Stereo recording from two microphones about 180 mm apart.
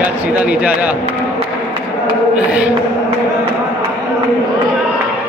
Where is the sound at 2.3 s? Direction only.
5° right (ahead or behind).